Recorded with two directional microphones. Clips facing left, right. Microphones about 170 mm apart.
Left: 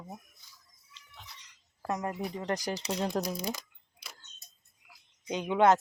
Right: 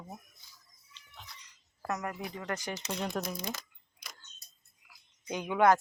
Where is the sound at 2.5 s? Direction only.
35° left (ahead or behind).